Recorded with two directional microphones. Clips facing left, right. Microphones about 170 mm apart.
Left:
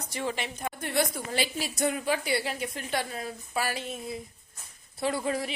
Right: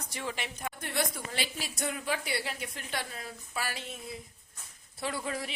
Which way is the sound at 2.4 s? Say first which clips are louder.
Left 6 dB; 40° left (ahead or behind).